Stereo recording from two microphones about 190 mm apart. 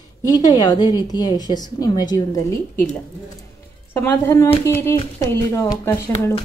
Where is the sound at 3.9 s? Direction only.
15° left (ahead or behind).